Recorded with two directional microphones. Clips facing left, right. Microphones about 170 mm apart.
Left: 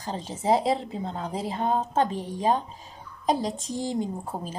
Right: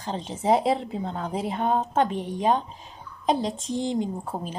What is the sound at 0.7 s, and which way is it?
Speech, 25° left (ahead or behind).